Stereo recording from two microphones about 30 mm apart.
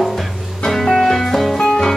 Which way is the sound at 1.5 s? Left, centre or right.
Centre.